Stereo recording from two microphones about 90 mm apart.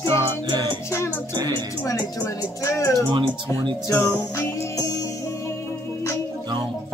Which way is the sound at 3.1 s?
60° right (ahead or behind).